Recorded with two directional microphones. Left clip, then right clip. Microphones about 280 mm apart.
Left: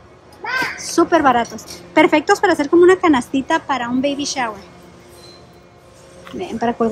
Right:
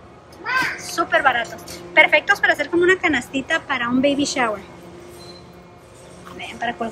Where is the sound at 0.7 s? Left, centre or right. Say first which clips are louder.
Left 4 dB; centre.